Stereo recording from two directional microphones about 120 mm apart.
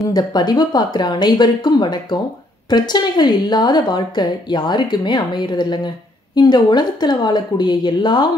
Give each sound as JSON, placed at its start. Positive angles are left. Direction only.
{"t": 0.0, "sound": "a woman's voice", "side_deg": 35}